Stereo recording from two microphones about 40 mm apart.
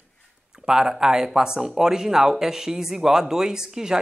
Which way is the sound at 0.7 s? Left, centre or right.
Centre.